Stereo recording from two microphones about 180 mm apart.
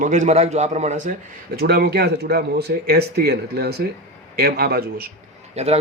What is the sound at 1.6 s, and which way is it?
Speech, 65° right (ahead or behind).